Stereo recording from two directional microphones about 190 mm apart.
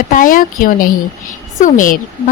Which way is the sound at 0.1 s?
45° left (ahead or behind).